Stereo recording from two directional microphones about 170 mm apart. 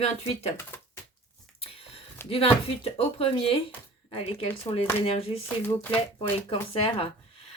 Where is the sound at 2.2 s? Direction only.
15° left (ahead or behind).